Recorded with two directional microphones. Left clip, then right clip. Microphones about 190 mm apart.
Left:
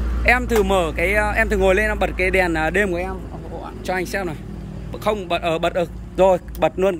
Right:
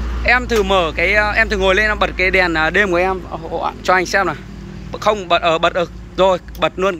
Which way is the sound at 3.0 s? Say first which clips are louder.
Right 11 dB; 35° right (ahead or behind).